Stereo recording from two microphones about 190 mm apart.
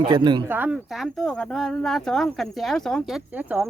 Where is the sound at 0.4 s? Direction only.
10° right (ahead or behind).